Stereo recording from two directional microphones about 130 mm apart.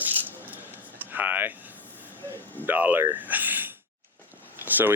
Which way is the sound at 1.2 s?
15° right (ahead or behind).